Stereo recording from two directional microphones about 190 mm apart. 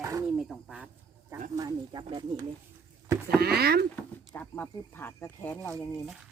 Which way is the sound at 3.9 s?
10° left (ahead or behind).